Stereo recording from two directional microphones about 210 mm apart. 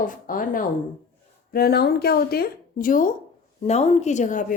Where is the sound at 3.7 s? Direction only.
30° left (ahead or behind).